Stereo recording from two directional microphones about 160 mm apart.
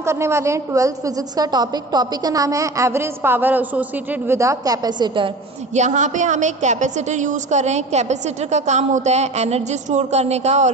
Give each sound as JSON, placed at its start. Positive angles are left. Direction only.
{"t": 0.0, "sound": "a woman's voice", "side_deg": -15}
{"t": 5.8, "sound": "a woman's voice", "side_deg": -50}